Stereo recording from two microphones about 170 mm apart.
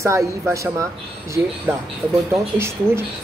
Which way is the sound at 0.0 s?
20° right (ahead or behind).